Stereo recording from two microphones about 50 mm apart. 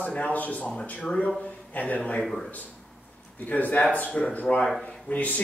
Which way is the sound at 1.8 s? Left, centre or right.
Left.